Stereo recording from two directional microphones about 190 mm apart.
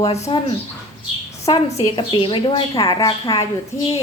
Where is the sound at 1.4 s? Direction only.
30° left (ahead or behind).